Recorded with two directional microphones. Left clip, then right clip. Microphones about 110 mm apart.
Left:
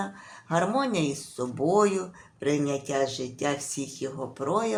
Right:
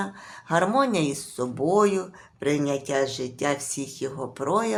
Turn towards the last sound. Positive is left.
turn(degrees=-40)  # may be behind; listen again after turning